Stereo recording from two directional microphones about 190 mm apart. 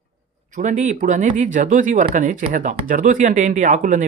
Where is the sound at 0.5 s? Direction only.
40° right (ahead or behind).